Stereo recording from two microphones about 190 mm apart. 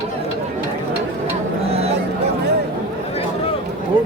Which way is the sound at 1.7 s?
30° right (ahead or behind).